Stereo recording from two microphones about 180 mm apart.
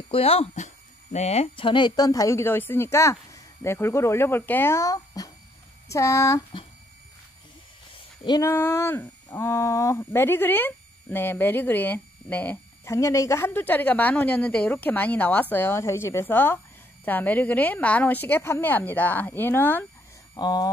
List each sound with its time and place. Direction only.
0.1 s speech: 35° left (ahead or behind); by 6.4 s 15° left (ahead or behind)
8.4 s speech: 15° left (ahead or behind)
20.3 s speech: 25° left (ahead or behind)